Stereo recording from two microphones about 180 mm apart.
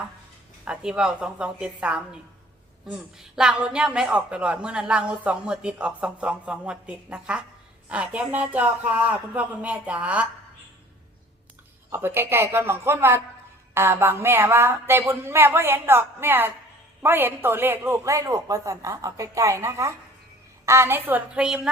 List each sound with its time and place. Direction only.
0.6 s a man's voice: 5° right (ahead or behind)
11.9 s a man's voice: 10° right (ahead or behind)